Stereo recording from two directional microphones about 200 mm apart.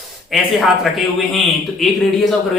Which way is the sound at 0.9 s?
Centre (ahead or behind).